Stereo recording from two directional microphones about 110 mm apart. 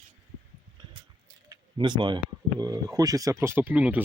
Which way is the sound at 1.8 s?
45° right (ahead or behind).